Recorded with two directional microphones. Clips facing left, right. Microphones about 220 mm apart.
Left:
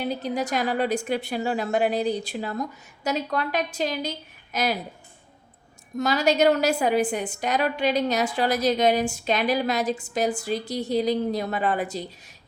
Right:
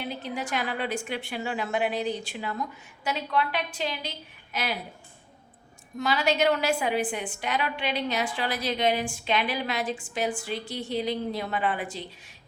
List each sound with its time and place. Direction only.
0.0 s a woman's voice: 40° left (ahead or behind)
6.0 s a woman's voice: 40° left (ahead or behind)